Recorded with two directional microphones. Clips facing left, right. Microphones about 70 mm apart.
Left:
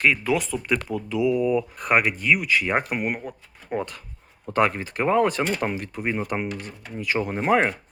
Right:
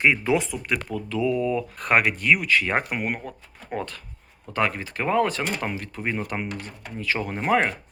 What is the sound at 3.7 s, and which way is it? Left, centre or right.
Speech, centre.